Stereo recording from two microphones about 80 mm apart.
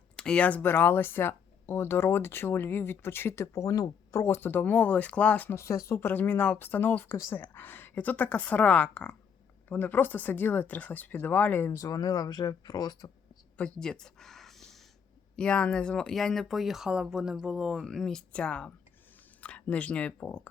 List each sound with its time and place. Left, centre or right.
0.2 s speech: centre
11.8 s speech: left
13.6 s a sound: centre
15.4 s speech: centre
17.8 s speech: centre